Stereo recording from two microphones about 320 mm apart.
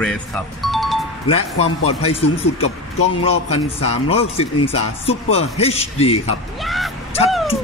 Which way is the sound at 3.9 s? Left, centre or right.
Centre.